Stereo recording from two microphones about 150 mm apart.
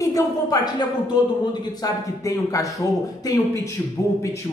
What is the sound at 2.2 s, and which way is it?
Speech, 20° left (ahead or behind).